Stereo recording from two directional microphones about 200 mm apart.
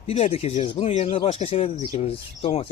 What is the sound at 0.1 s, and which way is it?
Speech, 30° left (ahead or behind).